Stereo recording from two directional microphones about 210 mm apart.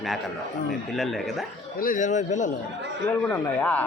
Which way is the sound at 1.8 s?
40° left (ahead or behind).